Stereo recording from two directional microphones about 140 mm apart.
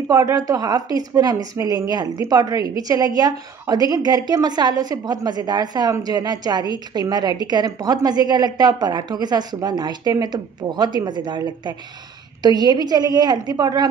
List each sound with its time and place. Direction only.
0.1 s a woman's voice: 25° right (ahead or behind)